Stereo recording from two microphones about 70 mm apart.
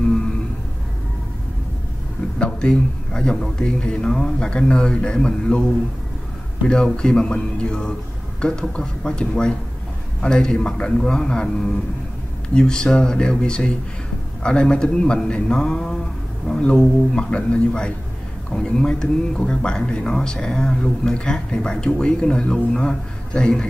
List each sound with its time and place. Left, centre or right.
2.3 s speech: centre
6.7 s speech: centre